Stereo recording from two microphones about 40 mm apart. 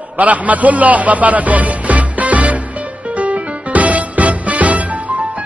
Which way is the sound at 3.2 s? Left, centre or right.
Right.